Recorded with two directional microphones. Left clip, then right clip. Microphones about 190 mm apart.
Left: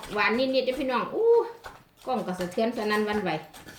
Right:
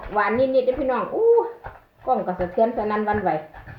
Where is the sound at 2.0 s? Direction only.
20° left (ahead or behind).